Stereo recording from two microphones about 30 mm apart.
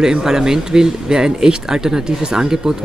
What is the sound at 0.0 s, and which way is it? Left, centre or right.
Speech, centre.